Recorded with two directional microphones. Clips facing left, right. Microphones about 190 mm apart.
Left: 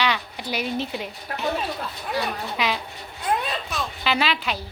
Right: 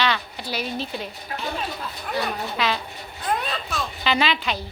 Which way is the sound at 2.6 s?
15° left (ahead or behind).